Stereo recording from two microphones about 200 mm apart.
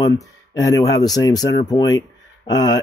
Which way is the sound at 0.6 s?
15° left (ahead or behind).